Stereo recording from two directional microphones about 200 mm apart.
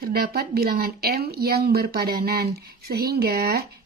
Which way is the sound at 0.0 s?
50° right (ahead or behind).